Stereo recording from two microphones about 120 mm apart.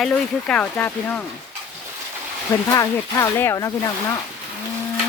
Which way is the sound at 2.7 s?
25° left (ahead or behind).